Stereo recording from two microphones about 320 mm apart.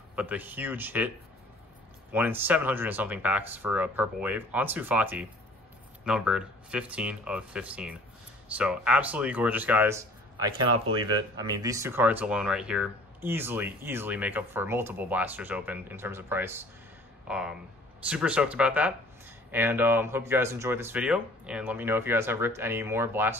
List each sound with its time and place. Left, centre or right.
0.1 s speech: centre
2.1 s speech: centre